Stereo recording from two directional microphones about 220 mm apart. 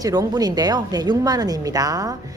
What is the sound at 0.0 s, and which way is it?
Speech, 15° right (ahead or behind).